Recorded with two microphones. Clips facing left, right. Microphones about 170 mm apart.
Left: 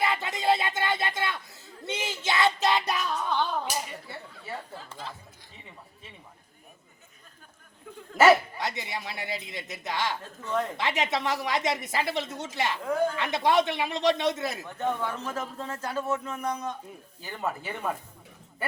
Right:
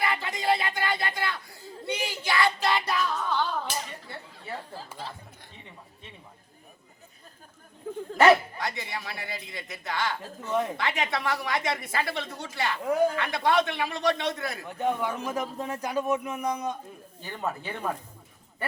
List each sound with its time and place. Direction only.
0.0 s music: 20° left (ahead or behind)
1.9 s child singing: 20° left (ahead or behind)
8.1 s speech: centre (ahead or behind)
8.5 s a woman's voice: 20° left (ahead or behind)
10.4 s a man's voice: 15° right (ahead or behind)
10.8 s a woman's voice: 20° left (ahead or behind)
14.7 s a man's voice: 15° right (ahead or behind)
17.2 s speech: centre (ahead or behind)